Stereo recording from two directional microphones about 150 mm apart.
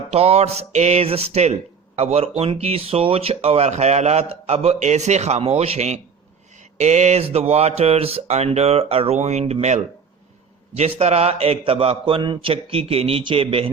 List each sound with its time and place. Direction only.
0.1 s a man's voice: 45° right (ahead or behind)